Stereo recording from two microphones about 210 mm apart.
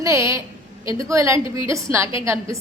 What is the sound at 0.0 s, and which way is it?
A man's voice, 15° right (ahead or behind).